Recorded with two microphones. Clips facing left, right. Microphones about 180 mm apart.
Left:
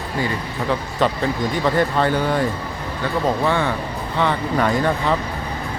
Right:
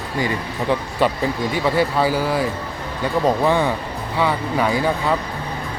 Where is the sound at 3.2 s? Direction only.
15° right (ahead or behind).